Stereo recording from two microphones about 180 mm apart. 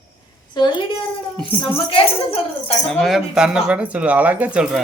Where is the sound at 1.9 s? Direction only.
35° left (ahead or behind).